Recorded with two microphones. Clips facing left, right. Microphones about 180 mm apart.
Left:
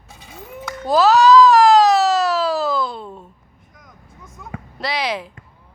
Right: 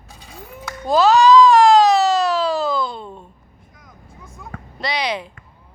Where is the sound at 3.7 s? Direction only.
Centre (ahead or behind).